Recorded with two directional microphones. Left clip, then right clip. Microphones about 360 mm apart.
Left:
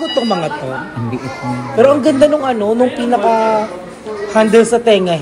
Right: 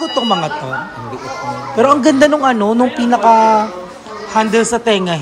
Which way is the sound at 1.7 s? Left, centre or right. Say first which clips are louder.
Left 1 dB; centre.